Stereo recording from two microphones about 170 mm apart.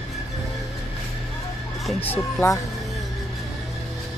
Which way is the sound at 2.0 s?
10° left (ahead or behind).